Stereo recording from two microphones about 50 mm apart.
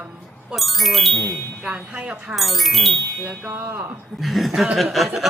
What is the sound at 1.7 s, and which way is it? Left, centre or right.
Speech, right.